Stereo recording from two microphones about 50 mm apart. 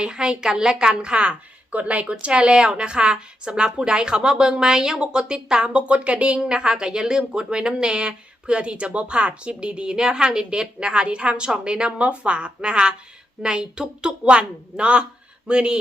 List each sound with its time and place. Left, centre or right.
0.0 s a woman's voice: centre